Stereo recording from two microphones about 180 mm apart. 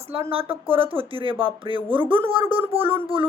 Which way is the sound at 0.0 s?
35° right (ahead or behind).